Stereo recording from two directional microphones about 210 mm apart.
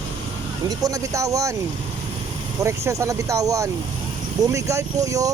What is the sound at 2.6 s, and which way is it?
Speech, 15° right (ahead or behind).